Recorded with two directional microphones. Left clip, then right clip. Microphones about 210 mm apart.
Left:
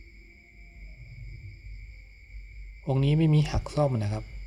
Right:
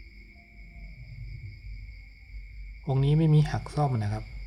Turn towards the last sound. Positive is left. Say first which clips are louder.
# left 3 dB
turn(degrees=15)  # may be behind; listen again after turning